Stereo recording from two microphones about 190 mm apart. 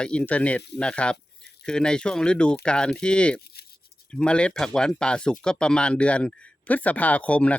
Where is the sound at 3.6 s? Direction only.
55° left (ahead or behind).